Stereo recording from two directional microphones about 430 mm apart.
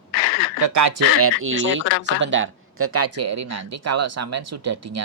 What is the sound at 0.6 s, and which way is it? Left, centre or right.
Speech, right.